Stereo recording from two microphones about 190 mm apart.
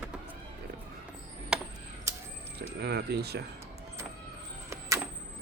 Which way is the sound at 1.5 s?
5° right (ahead or behind).